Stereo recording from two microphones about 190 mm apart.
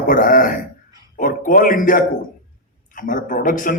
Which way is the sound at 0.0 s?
45° left (ahead or behind).